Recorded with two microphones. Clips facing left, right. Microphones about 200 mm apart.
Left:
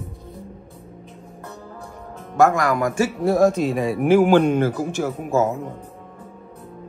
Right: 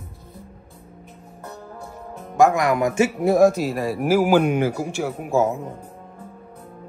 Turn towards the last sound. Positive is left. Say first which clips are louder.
# left 1 dB
turn(degrees=-10)  # may be behind; listen again after turning